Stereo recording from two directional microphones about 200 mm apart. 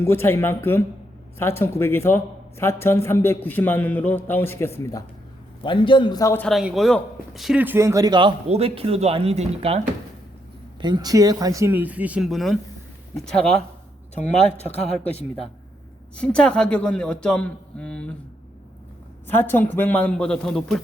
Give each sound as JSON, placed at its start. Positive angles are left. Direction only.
{"t": 0.0, "sound": "a man's voice", "side_deg": 10}
{"t": 16.1, "sound": "a man's voice", "side_deg": 5}
{"t": 19.3, "sound": "a man's voice", "side_deg": 10}